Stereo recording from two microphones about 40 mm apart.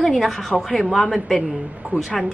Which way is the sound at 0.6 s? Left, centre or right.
Centre.